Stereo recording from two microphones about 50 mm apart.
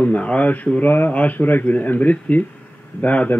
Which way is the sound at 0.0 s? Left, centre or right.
Left.